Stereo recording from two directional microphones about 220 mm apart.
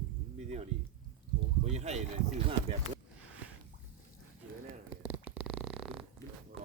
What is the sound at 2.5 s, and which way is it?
Speech, 25° right (ahead or behind).